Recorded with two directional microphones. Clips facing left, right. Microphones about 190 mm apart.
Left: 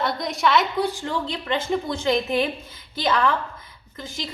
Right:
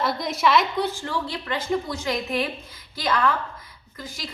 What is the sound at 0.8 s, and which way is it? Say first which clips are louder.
A woman's voice: left 2 dB; 15° left (ahead or behind).